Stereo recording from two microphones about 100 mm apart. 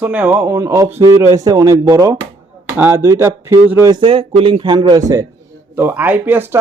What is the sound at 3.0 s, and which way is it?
Speech, 30° right (ahead or behind).